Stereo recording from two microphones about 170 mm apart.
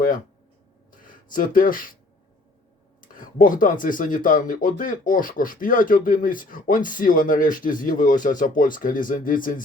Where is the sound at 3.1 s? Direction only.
50° left (ahead or behind).